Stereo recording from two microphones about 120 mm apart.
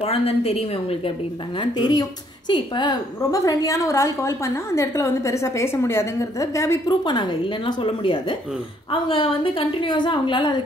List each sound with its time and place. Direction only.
0.0 s a woman's voice: 55° left (ahead or behind)
1.6 s a woman's voice: 40° left (ahead or behind)
7.1 s a woman's voice: 40° left (ahead or behind)